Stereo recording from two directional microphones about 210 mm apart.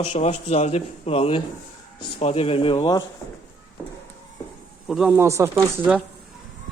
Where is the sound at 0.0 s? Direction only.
30° left (ahead or behind).